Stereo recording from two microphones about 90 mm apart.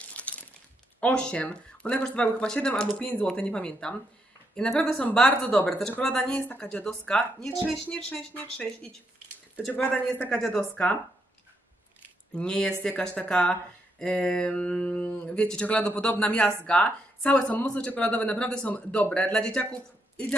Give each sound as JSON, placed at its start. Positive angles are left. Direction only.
{"t": 0.1, "sound": "a sound", "side_deg": 15}
{"t": 1.0, "sound": "speech", "side_deg": 15}
{"t": 9.7, "sound": "speech", "side_deg": 20}
{"t": 10.3, "sound": "speech", "side_deg": 10}
{"t": 12.4, "sound": "speech", "side_deg": 10}